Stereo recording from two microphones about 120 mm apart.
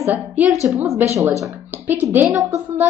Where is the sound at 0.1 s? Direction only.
15° right (ahead or behind).